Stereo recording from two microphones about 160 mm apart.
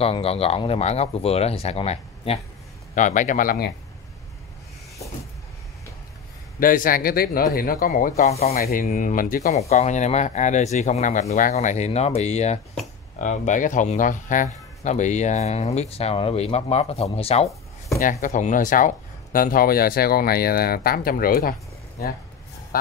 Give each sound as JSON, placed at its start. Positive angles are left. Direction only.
{"t": 0.0, "sound": "speech", "side_deg": 40}
{"t": 2.9, "sound": "a man's voice", "side_deg": 50}
{"t": 6.6, "sound": "speech", "side_deg": 60}
{"t": 9.5, "sound": "a man's voice", "side_deg": 40}
{"t": 18.0, "sound": "speech", "side_deg": 50}